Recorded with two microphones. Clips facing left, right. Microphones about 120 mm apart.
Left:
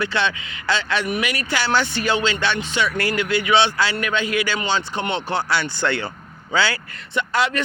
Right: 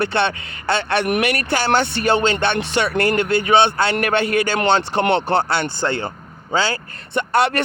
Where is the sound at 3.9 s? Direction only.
65° right (ahead or behind); by 6.7 s 40° right (ahead or behind).